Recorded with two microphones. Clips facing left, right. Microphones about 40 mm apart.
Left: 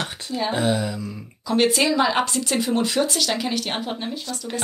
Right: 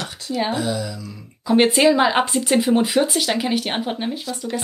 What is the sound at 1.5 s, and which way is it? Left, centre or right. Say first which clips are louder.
Speech: right 4 dB; right.